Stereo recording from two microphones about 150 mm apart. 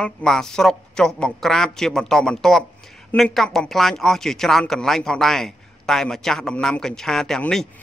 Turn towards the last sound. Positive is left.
turn(degrees=5)  # may be behind; listen again after turning